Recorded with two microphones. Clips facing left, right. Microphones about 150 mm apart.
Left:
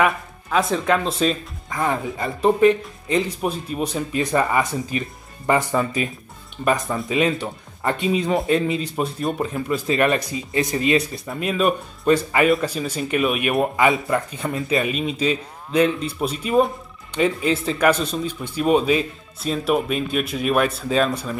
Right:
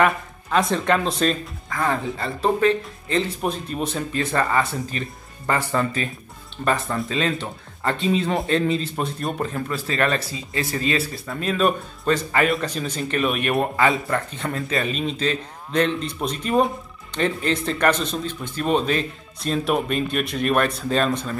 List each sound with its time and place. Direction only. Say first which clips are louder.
0.0 s speech: even; 5° left (ahead or behind)
1.7 s a man's voice: left 1 dB; 15° left (ahead or behind)